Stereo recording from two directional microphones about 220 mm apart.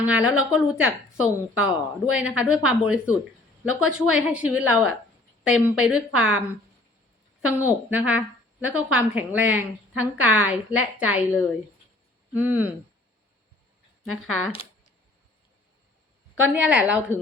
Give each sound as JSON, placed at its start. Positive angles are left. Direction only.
{"t": 0.0, "sound": "a woman's voice", "side_deg": -5}
{"t": 7.5, "sound": "a woman's voice", "side_deg": -10}
{"t": 14.0, "sound": "a woman's voice", "side_deg": 0}
{"t": 16.5, "sound": "a woman's voice", "side_deg": -5}